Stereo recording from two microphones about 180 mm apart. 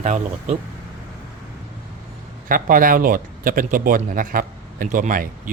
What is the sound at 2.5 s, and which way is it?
Speech, 50° right (ahead or behind).